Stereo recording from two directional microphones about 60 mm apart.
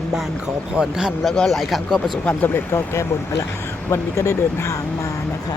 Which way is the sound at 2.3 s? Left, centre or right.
Left.